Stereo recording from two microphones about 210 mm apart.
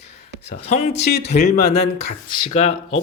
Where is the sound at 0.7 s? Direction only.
30° left (ahead or behind).